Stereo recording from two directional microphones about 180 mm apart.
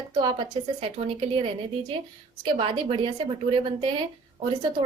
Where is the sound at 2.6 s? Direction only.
30° right (ahead or behind).